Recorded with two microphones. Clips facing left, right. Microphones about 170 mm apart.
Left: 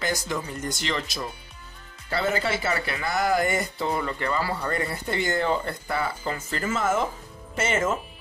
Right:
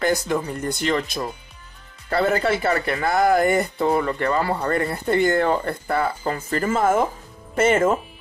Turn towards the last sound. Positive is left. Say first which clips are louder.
# right 8 dB
turn(degrees=-55)  # may be behind; listen again after turning